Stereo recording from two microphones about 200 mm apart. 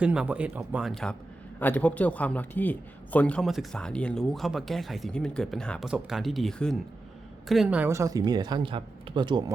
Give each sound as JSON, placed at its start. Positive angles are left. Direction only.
{"t": 0.0, "sound": "a man's voice", "side_deg": -5}